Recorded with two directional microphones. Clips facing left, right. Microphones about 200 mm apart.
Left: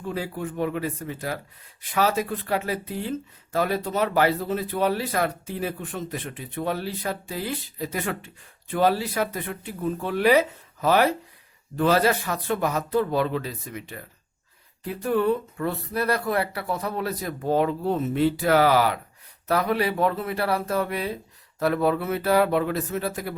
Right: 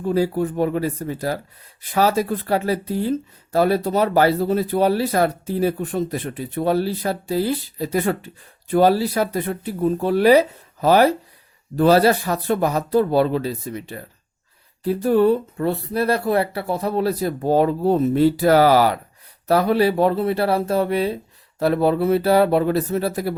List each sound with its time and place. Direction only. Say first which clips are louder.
0.0 s speech: right 10 dB; 35° right (ahead or behind)